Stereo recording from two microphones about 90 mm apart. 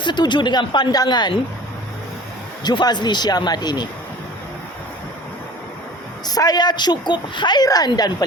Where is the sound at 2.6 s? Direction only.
55° left (ahead or behind).